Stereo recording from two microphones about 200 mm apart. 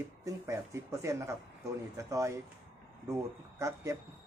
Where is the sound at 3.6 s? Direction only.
15° right (ahead or behind).